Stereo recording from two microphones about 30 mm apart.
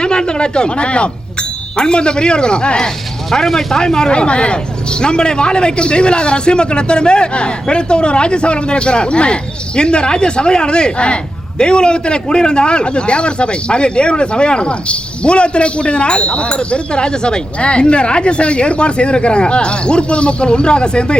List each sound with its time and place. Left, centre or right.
0.0 s chink: left
1.7 s speech: left
3.3 s speech: centre; by 21.2 s left